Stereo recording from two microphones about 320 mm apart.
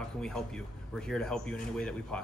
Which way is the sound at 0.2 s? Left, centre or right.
Centre.